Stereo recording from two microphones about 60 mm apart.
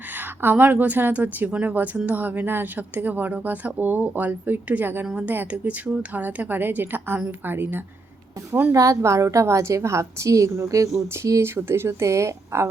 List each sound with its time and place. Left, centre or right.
0.4 s a woman's voice: right
8.7 s a woman's voice: right
11.4 s speech: right